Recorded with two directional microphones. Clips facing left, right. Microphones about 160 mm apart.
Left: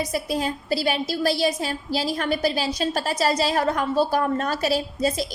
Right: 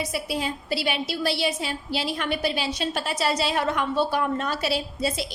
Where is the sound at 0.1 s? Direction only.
40° left (ahead or behind).